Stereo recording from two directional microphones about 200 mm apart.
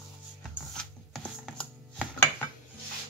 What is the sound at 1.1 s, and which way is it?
Chopping, 5° left (ahead or behind).